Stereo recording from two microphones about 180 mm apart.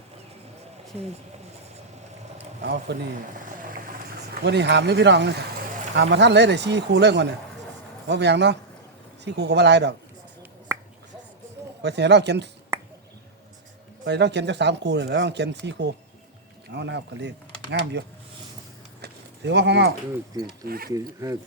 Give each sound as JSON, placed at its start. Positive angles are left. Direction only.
{"t": 2.6, "sound": "speech", "side_deg": -70}
{"t": 3.3, "sound": "vehicle", "side_deg": -50}
{"t": 4.4, "sound": "speech", "side_deg": -70}
{"t": 11.8, "sound": "speech", "side_deg": -70}
{"t": 14.0, "sound": "speech", "side_deg": -75}
{"t": 19.0, "sound": "a sound", "side_deg": -75}
{"t": 20.7, "sound": "speech", "side_deg": -55}
{"t": 20.9, "sound": "speech", "side_deg": -20}